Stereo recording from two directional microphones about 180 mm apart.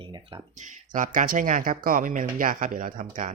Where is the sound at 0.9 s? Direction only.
45° right (ahead or behind).